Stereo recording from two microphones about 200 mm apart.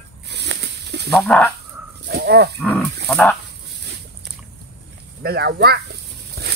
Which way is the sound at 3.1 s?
5° left (ahead or behind).